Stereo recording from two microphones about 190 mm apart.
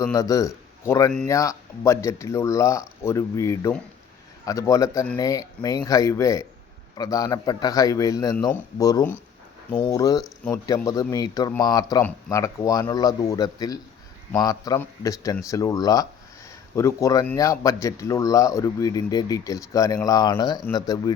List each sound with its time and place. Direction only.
0.0 s a man's voice: 15° left (ahead or behind)